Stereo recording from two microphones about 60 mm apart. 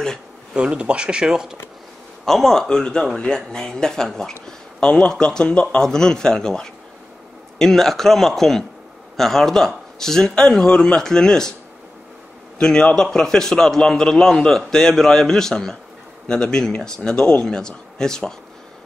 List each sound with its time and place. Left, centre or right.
0.6 s speech: centre
2.2 s a man's voice: centre
12.5 s speech: centre